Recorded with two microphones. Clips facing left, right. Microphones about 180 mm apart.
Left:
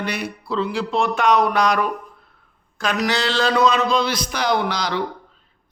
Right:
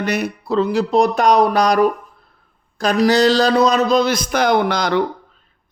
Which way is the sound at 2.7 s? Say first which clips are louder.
Right 7 dB; 35° right (ahead or behind).